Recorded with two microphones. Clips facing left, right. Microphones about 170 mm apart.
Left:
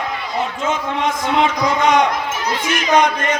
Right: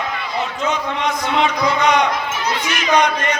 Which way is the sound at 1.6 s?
45° left (ahead or behind).